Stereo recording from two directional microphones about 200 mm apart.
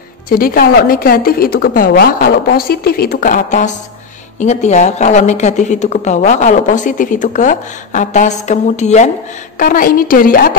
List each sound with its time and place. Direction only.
0.3 s a woman's voice: 45° left (ahead or behind)